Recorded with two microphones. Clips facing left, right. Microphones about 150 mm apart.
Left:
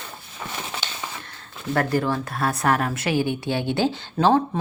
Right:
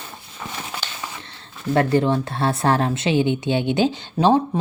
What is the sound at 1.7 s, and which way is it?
A woman's voice, 25° right (ahead or behind).